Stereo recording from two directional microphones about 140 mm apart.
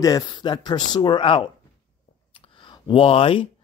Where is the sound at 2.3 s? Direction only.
40° left (ahead or behind).